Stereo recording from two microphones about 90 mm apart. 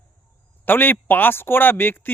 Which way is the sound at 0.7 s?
20° left (ahead or behind).